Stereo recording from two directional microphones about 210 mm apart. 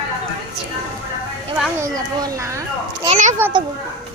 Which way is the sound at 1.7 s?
15° right (ahead or behind).